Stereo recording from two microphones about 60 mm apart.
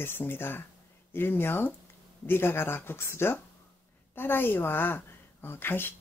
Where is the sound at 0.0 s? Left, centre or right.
Left.